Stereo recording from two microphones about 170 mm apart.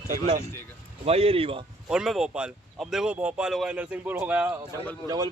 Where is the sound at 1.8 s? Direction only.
5° right (ahead or behind).